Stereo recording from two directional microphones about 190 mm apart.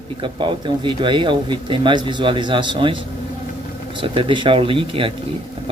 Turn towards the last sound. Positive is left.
turn(degrees=-25)  # may be behind; listen again after turning